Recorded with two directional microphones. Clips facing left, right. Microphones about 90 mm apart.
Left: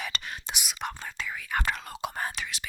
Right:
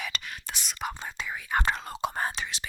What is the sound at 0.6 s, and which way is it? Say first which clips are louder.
Whispering: right 2 dB; centre (ahead or behind).